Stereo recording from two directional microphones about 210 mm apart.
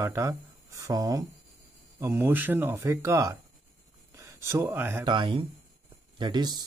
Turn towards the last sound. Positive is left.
turn(degrees=-20)  # may be behind; listen again after turning